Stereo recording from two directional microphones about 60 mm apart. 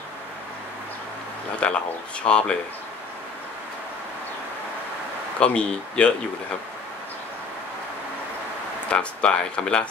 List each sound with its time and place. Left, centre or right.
1.6 s speech: centre
5.4 s speech: centre
8.9 s speech: centre